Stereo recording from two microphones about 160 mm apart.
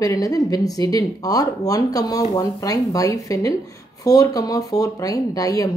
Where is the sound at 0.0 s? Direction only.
20° left (ahead or behind).